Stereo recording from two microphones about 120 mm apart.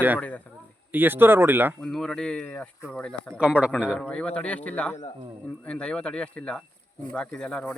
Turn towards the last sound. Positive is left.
turn(degrees=10)  # may be behind; listen again after turning